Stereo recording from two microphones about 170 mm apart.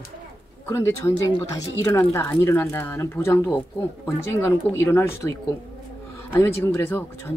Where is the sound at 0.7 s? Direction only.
15° left (ahead or behind).